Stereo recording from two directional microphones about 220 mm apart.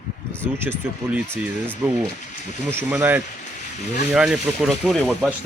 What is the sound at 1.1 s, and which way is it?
Speech, 5° right (ahead or behind).